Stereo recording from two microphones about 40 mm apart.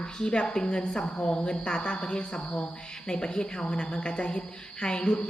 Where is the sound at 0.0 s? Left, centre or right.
Left.